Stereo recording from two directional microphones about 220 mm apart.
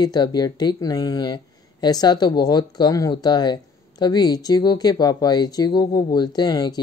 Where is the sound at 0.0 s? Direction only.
20° left (ahead or behind).